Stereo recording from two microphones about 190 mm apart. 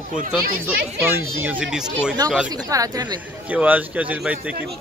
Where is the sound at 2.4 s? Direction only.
20° right (ahead or behind).